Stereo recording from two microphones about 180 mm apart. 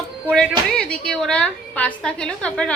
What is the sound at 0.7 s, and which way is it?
A woman's voice, 5° left (ahead or behind).